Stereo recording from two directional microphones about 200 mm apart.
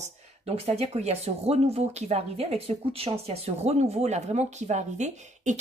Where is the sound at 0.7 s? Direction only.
35° right (ahead or behind).